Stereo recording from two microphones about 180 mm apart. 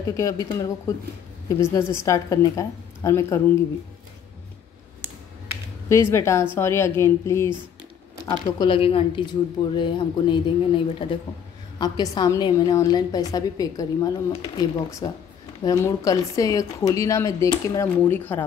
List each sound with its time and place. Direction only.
0.2 s a woman's voice: 15° left (ahead or behind)
5.9 s a woman's voice: 15° left (ahead or behind)
8.5 s a woman's voice: 25° left (ahead or behind); by 18.4 s 10° left (ahead or behind)